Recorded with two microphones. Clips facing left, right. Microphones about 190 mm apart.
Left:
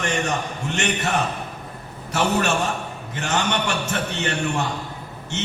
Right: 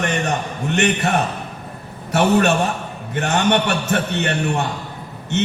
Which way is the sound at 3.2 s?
60° right (ahead or behind).